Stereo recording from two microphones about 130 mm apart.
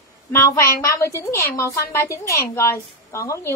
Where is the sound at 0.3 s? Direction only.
20° left (ahead or behind).